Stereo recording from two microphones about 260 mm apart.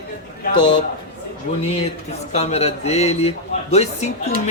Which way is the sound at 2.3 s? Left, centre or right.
Left.